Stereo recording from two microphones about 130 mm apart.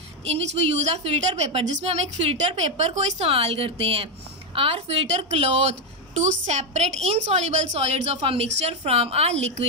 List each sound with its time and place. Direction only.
0.7 s a woman's voice: 55° right (ahead or behind)
6.2 s a woman's voice: 60° right (ahead or behind)